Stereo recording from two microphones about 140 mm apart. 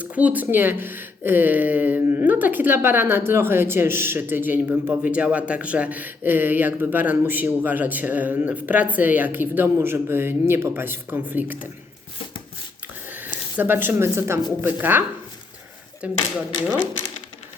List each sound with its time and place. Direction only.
0.0 s speech: 10° right (ahead or behind)
13.6 s speech: 15° right (ahead or behind)
16.0 s speech: 10° right (ahead or behind)